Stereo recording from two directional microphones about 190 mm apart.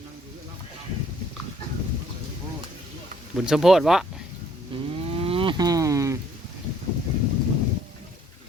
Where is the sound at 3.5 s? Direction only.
Centre (ahead or behind).